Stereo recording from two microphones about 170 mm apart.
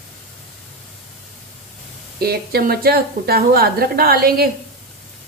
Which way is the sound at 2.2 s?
65° right (ahead or behind).